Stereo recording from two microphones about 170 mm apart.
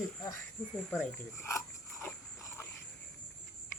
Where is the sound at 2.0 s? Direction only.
15° left (ahead or behind).